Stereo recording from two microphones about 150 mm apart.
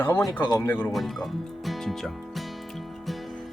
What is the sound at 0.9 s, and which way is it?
Music, centre (ahead or behind).